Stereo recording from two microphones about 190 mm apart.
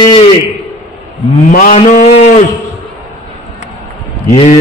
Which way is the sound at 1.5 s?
45° left (ahead or behind).